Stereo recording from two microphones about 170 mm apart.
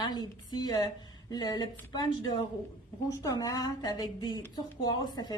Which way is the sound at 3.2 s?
20° left (ahead or behind).